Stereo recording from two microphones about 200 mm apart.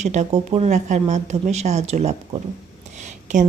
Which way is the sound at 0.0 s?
35° right (ahead or behind).